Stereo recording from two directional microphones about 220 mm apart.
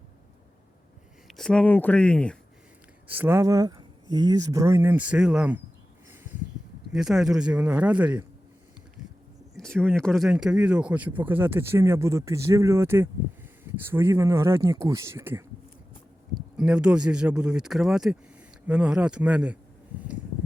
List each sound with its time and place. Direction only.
1.3 s speech: 5° left (ahead or behind)
3.1 s speech: 10° right (ahead or behind)
6.9 s speech: centre (ahead or behind)
9.6 s speech: centre (ahead or behind)
16.6 s speech: 5° right (ahead or behind)